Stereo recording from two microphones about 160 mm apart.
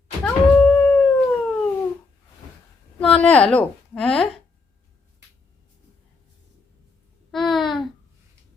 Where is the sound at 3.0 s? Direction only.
5° left (ahead or behind).